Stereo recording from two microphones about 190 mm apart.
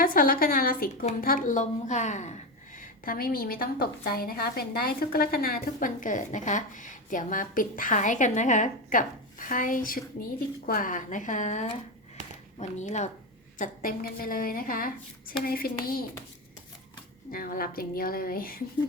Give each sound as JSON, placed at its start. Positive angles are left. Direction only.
{"t": 0.0, "sound": "a woman's voice", "side_deg": 50}
{"t": 13.6, "sound": "a woman's voice", "side_deg": 50}
{"t": 17.3, "sound": "a woman's voice", "side_deg": 50}